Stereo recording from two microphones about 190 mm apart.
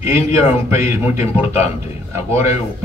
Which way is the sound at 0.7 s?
15° right (ahead or behind).